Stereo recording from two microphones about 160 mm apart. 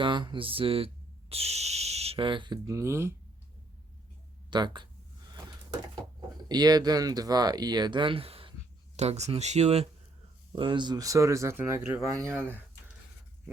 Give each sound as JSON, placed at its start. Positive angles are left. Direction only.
{"t": 0.0, "sound": "speech", "side_deg": -30}
{"t": 4.5, "sound": "speech", "side_deg": -30}
{"t": 6.5, "sound": "speech", "side_deg": -25}
{"t": 10.5, "sound": "speech", "side_deg": -30}